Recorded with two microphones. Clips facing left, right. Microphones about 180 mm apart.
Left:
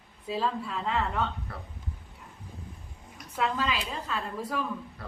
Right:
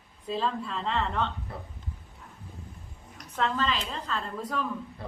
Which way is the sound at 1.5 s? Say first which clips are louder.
Right 2 dB; 20° right (ahead or behind).